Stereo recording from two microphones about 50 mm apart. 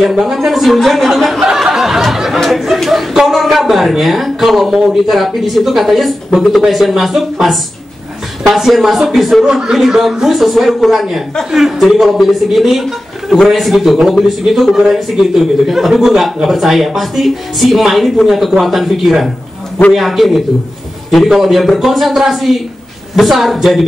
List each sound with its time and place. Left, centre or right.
0.0 s speech: centre
1.4 s a sound: centre
2.4 s speech: centre
9.5 s speech: centre